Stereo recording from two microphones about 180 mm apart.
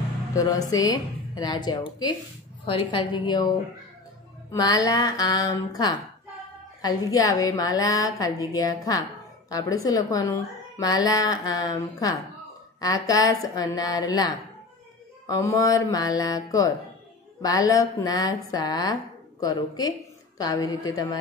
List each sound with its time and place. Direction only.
0.3 s a woman's voice: 20° left (ahead or behind)
20.3 s a woman's voice: 20° left (ahead or behind)